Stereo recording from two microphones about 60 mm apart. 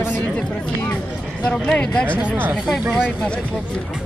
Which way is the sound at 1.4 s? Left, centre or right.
Centre.